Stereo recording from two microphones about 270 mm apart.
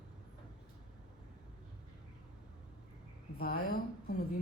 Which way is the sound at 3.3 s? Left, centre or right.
Left.